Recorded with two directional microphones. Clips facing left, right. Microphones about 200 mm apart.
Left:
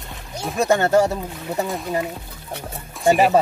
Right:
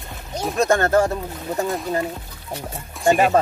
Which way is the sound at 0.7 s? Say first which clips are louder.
Left 2 dB; 15° left (ahead or behind).